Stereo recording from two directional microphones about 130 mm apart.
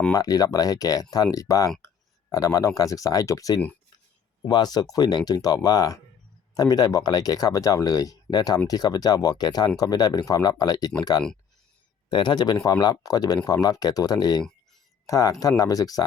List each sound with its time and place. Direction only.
0.1 s speech: 30° left (ahead or behind)
12.0 s speech: 35° left (ahead or behind)